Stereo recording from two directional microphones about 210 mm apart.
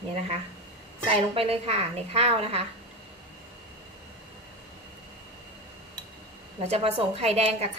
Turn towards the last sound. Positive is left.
turn(degrees=-30)  # may be behind; listen again after turning